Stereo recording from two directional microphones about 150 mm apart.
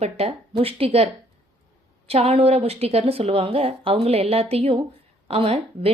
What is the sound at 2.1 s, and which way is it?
A woman's voice, 40° right (ahead or behind).